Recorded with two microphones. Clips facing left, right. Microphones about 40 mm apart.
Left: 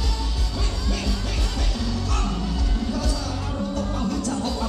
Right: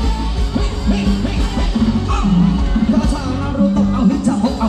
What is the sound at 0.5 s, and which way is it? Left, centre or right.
Music, right.